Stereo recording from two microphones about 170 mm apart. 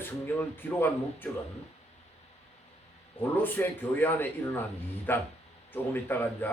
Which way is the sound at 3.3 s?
10° left (ahead or behind).